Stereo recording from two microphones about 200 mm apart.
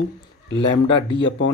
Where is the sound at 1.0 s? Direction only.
25° left (ahead or behind).